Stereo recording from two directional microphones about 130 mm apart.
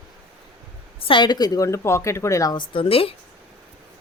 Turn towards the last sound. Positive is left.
turn(degrees=45)  # may be behind; listen again after turning